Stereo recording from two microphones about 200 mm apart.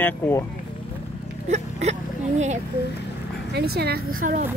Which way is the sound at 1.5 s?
35° right (ahead or behind).